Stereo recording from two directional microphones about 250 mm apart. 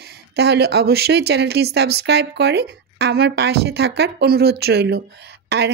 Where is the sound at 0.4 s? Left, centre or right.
Right.